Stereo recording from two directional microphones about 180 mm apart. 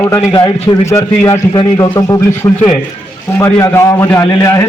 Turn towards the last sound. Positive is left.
turn(degrees=15)  # may be behind; listen again after turning